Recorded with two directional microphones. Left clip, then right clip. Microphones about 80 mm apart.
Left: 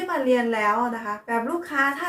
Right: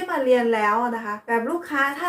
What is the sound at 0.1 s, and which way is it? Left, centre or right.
A woman's voice, right.